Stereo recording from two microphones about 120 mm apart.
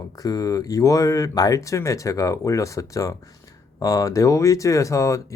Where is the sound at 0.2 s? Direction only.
30° left (ahead or behind).